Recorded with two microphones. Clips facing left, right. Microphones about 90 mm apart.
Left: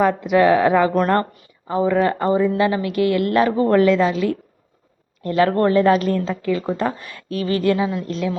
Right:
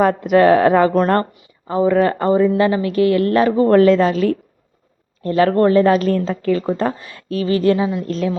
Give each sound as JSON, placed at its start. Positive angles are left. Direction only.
{"t": 0.0, "sound": "a woman's voice", "side_deg": -40}